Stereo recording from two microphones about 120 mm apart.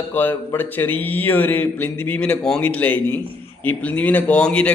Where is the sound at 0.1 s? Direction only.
15° left (ahead or behind).